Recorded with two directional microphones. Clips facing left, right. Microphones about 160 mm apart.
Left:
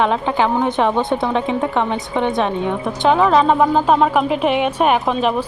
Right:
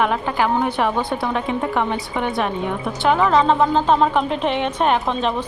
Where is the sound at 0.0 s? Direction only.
25° left (ahead or behind).